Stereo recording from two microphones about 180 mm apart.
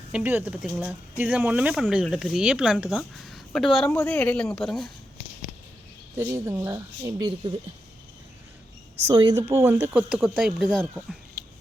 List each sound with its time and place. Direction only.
0.1 s speech: 10° right (ahead or behind)
6.1 s speech: 15° right (ahead or behind)
9.0 s speech: 20° right (ahead or behind)